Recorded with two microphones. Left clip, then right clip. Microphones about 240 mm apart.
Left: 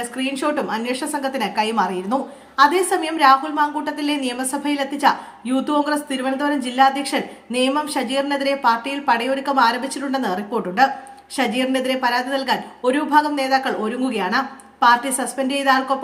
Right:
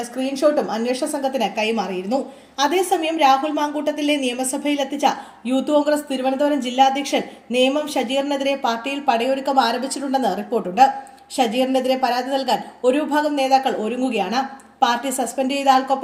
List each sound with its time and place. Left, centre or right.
0.2 s a woman's voice: centre
1.4 s a woman's voice: left
5.5 s a woman's voice: centre
6.6 s a woman's voice: left
8.4 s a woman's voice: centre